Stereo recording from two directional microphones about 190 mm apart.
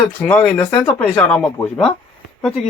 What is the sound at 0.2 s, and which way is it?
Speech, 10° left (ahead or behind).